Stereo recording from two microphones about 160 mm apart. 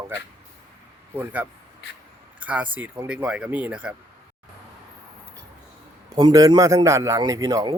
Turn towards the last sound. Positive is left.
turn(degrees=-20)  # may be behind; listen again after turning